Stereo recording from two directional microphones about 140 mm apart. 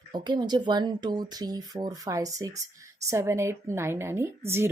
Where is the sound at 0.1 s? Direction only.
30° right (ahead or behind).